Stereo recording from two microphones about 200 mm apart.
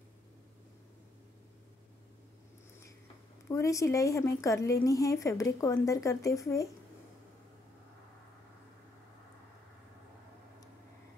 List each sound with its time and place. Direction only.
3.4 s speech: 15° left (ahead or behind)